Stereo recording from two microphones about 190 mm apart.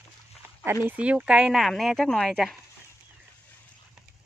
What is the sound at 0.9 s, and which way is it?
Speech, 5° right (ahead or behind).